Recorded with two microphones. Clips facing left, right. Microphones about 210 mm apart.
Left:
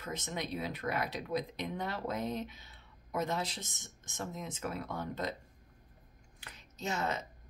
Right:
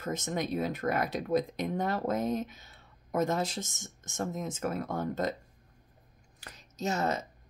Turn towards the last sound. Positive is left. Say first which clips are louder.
# right 5 dB
turn(degrees=-40)  # may be behind; listen again after turning